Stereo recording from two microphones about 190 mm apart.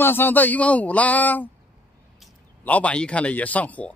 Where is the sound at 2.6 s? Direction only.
5° left (ahead or behind).